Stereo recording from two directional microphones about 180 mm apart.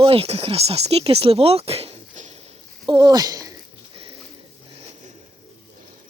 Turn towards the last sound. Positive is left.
turn(degrees=-30)  # may be behind; listen again after turning